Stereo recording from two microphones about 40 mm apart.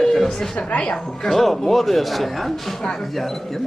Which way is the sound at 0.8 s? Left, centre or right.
Left.